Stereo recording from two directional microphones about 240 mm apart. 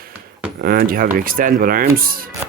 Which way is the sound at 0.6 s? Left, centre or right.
Right.